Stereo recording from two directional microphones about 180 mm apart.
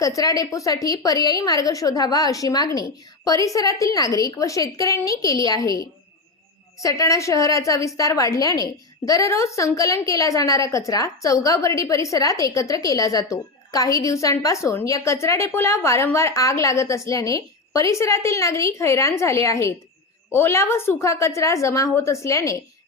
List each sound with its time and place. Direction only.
0.0 s a woman's voice: 20° left (ahead or behind)